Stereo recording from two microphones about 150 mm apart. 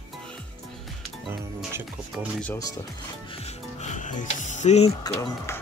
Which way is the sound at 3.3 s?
45° left (ahead or behind).